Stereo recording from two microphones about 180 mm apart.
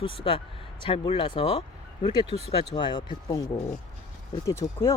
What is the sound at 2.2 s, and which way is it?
Speech, 35° right (ahead or behind).